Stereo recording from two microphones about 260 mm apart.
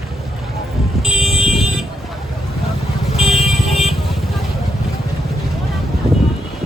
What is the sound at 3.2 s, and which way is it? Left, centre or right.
Vehicle, centre.